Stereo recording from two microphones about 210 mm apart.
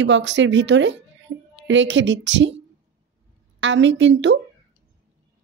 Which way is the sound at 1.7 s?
60° right (ahead or behind).